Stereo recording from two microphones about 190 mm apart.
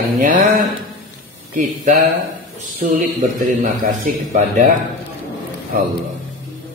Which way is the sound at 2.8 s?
40° right (ahead or behind).